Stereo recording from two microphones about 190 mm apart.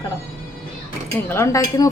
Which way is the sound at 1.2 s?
15° left (ahead or behind).